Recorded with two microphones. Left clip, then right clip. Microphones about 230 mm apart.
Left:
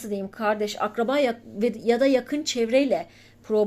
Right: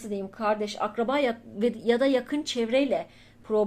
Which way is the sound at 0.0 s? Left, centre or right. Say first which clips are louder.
Left 2 dB; left.